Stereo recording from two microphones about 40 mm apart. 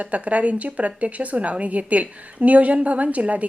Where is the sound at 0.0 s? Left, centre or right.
Right.